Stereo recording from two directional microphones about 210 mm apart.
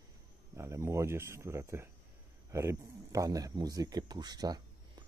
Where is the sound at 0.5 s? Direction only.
15° right (ahead or behind).